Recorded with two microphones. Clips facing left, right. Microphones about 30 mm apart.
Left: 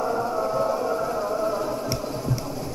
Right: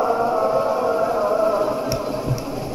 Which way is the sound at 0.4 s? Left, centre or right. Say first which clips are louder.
Right 5 dB; right.